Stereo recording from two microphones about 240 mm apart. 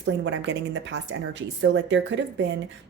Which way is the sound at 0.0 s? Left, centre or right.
Right.